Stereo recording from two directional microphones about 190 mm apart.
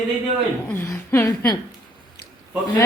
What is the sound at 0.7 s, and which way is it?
Speech, 15° left (ahead or behind).